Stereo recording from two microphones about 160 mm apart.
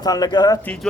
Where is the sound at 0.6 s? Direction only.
5° left (ahead or behind).